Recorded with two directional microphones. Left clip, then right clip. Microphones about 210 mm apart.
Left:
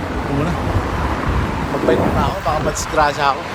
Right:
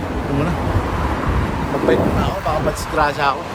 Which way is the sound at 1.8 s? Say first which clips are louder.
Left 1 dB; 10° left (ahead or behind).